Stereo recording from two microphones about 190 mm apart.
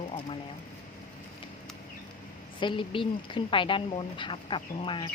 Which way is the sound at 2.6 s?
25° left (ahead or behind).